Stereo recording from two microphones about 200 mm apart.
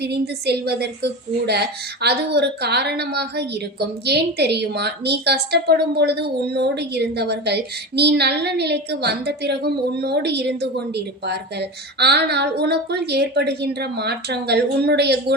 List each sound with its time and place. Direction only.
0.0 s a woman's voice: 55° right (ahead or behind)